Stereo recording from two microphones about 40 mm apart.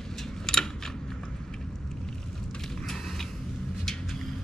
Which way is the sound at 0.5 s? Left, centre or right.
Centre.